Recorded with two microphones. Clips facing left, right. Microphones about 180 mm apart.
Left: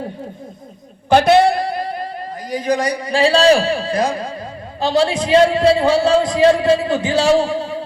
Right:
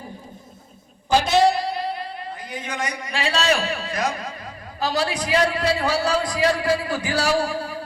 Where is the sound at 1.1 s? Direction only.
60° left (ahead or behind).